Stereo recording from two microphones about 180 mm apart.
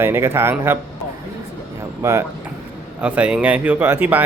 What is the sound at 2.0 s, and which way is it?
Speech, 15° right (ahead or behind).